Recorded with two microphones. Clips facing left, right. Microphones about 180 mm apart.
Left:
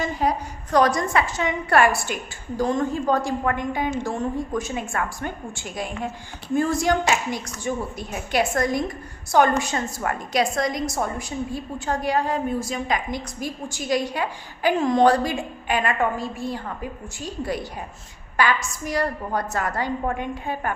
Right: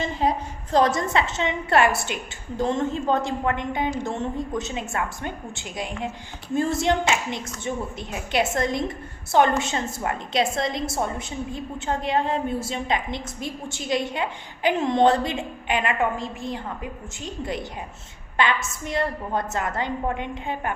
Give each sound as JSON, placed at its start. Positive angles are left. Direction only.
{"t": 0.0, "sound": "a woman's voice", "side_deg": -25}